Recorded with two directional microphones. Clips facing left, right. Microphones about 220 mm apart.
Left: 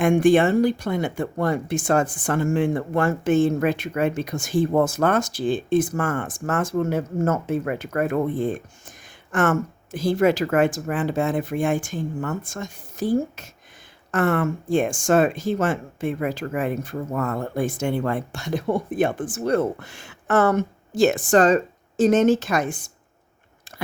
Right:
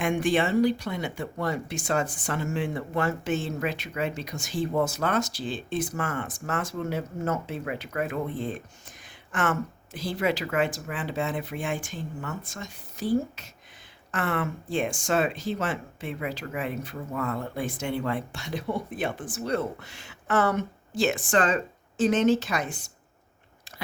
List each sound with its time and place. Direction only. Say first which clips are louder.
0.0 s speech: left 8 dB; 50° left (ahead or behind)